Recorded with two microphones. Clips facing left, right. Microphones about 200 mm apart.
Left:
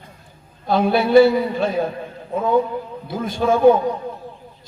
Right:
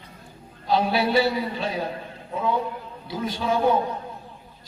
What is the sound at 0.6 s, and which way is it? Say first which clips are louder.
A man's voice: left 4 dB; 50° left (ahead or behind).